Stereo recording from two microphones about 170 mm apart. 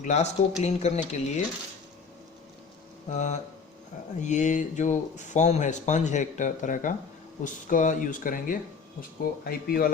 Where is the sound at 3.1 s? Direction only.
45° left (ahead or behind).